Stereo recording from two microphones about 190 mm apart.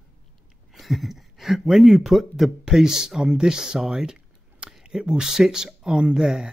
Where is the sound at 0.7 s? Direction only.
Centre (ahead or behind).